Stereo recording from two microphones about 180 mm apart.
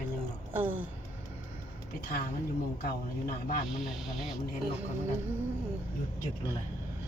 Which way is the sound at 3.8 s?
Centre (ahead or behind).